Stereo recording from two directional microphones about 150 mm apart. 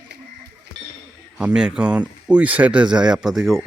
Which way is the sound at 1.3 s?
5° right (ahead or behind).